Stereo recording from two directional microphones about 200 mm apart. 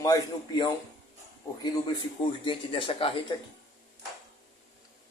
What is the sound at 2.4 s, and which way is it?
Speech, 25° left (ahead or behind).